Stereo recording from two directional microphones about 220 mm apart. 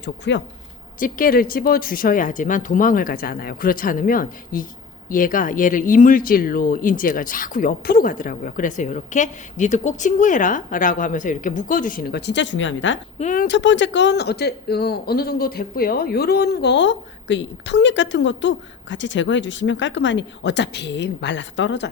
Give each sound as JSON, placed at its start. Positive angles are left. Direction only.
{"t": 0.0, "sound": "speech", "side_deg": 50}
{"t": 0.9, "sound": "speech", "side_deg": 40}
{"t": 13.1, "sound": "speech", "side_deg": 35}
{"t": 13.6, "sound": "speech", "side_deg": 55}